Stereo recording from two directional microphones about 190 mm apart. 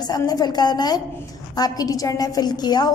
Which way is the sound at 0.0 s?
20° left (ahead or behind).